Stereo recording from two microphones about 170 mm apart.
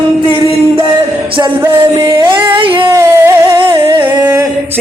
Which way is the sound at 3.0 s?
20° right (ahead or behind).